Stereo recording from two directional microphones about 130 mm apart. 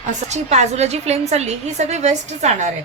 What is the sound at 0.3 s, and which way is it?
A woman's voice, 60° right (ahead or behind).